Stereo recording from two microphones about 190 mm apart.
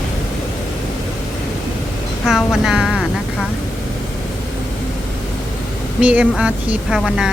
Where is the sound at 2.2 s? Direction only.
Centre (ahead or behind).